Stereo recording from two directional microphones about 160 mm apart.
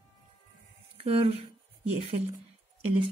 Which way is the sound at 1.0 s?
40° right (ahead or behind).